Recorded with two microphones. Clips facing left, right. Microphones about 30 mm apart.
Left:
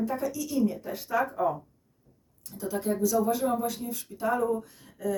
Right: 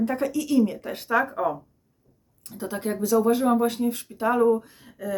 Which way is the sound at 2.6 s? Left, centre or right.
Right.